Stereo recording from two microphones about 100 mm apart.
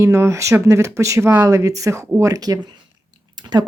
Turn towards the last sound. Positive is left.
turn(degrees=-45)  # may be behind; listen again after turning